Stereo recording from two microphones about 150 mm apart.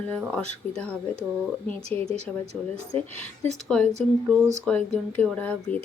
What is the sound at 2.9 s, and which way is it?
Speech, 40° right (ahead or behind).